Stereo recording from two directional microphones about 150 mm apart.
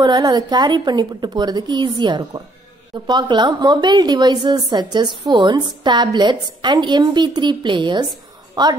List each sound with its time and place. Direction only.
0.0 s a woman's voice: 25° right (ahead or behind)